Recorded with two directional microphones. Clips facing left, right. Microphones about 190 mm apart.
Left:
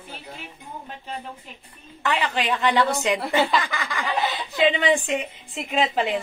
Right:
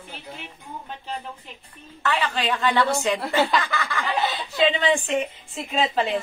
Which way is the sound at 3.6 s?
15° left (ahead or behind).